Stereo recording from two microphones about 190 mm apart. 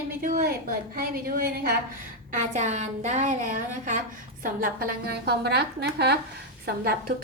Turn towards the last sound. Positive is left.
turn(degrees=-55)  # may be behind; listen again after turning